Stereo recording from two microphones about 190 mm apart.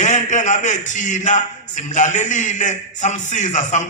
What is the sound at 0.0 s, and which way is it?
A man's voice, 40° left (ahead or behind).